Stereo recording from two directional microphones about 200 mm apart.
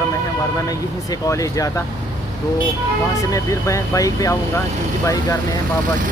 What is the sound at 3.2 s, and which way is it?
Speech, 15° left (ahead or behind).